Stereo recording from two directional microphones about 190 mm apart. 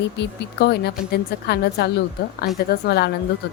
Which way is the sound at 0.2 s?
60° left (ahead or behind).